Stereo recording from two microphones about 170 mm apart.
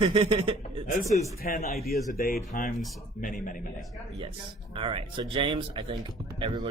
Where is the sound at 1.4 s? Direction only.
50° left (ahead or behind).